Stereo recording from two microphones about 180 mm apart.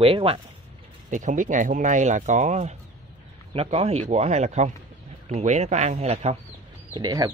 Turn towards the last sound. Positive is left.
turn(degrees=-20)  # may be behind; listen again after turning